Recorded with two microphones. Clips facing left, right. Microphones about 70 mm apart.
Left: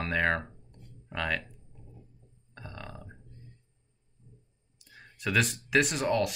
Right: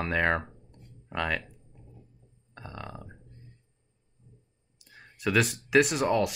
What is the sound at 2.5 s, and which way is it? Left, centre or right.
Burping, centre.